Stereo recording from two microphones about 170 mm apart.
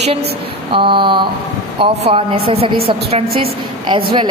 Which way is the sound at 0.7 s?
30° right (ahead or behind).